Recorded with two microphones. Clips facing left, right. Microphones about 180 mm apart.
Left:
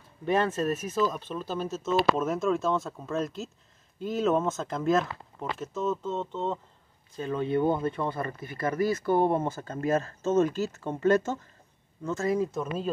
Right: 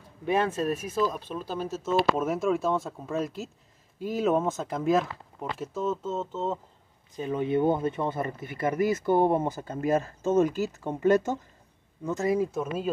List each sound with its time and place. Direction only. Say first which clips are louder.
0.2 s speech: even; 10° right (ahead or behind)
7.2 s speech: right 1 dB; 15° right (ahead or behind)